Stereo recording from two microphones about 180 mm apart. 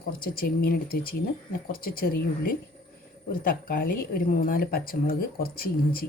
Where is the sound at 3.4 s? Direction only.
50° left (ahead or behind).